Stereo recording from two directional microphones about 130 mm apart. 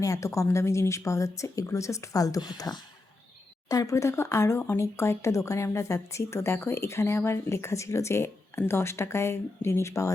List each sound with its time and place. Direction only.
0.0 s speech: 25° left (ahead or behind)